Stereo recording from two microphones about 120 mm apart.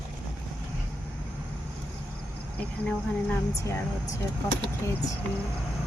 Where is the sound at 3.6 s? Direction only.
20° left (ahead or behind).